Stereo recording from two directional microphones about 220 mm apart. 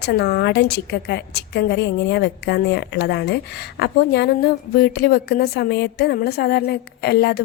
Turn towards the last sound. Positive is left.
turn(degrees=50)  # may be behind; listen again after turning